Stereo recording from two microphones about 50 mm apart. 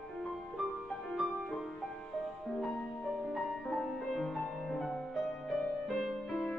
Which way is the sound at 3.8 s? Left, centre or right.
Centre.